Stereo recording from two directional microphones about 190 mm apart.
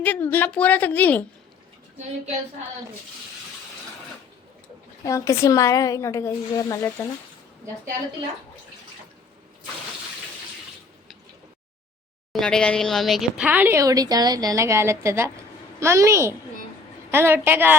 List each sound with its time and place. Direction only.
0.0 s a woman's voice: 10° left (ahead or behind)
5.0 s a woman's voice: 15° left (ahead or behind)
12.3 s speech: 5° left (ahead or behind)